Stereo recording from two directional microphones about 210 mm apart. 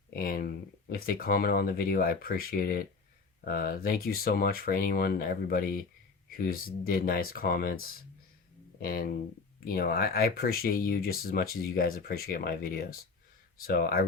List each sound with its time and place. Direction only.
0.1 s speech: 45° left (ahead or behind)